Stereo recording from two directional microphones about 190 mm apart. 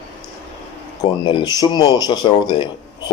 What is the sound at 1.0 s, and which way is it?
A man's voice, 20° left (ahead or behind).